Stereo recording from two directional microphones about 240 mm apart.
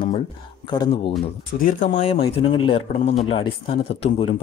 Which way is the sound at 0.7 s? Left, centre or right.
Centre.